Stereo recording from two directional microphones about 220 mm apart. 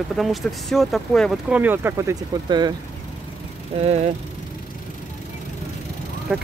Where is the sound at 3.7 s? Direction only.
30° right (ahead or behind).